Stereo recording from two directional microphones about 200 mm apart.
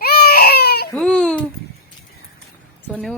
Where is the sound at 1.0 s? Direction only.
5° left (ahead or behind).